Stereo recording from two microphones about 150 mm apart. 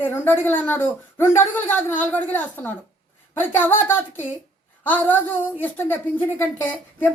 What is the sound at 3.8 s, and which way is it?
A woman's voice, 15° left (ahead or behind).